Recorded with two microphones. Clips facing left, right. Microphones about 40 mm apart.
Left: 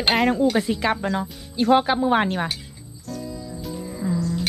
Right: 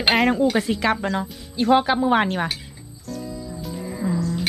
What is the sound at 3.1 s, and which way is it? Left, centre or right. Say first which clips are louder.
Music: right 1 dB; centre.